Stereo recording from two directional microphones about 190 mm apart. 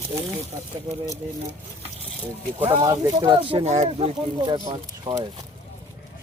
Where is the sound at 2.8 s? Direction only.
20° right (ahead or behind).